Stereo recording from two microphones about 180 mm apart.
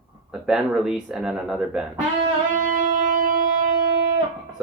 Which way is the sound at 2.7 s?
45° right (ahead or behind).